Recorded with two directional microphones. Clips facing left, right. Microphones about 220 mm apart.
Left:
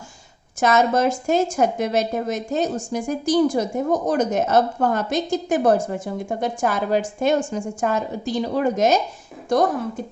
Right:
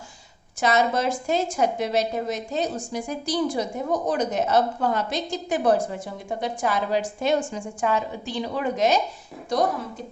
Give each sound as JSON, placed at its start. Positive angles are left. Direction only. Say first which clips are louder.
{"t": 0.6, "sound": "a woman's voice", "louder": "left 4 dB", "side_deg": 45}